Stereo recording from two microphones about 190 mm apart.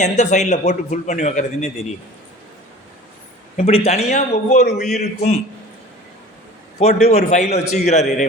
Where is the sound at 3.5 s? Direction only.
30° left (ahead or behind).